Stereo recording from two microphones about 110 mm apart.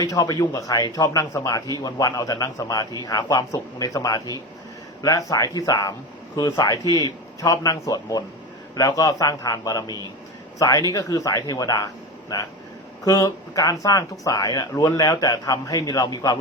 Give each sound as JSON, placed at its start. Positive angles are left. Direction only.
{"t": 0.0, "sound": "speech", "side_deg": 35}